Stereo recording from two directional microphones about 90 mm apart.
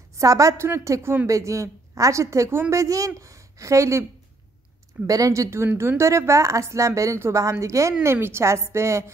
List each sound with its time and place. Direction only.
0.1 s a woman's voice: 35° right (ahead or behind)
5.0 s a woman's voice: 40° right (ahead or behind)